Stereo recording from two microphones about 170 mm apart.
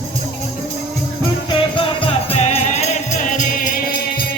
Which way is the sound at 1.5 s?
30° left (ahead or behind).